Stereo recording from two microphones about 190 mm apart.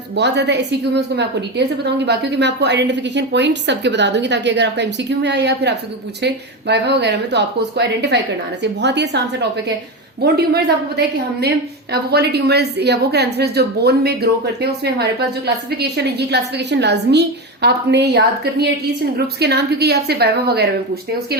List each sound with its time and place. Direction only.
0.2 s a woman's voice: 65° right (ahead or behind)